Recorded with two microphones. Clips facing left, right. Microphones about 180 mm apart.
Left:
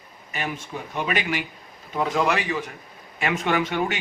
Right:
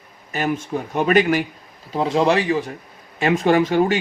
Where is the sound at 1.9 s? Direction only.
30° right (ahead or behind).